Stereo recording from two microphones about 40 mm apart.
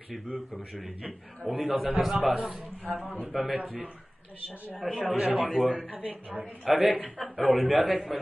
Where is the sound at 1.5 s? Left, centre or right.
Right.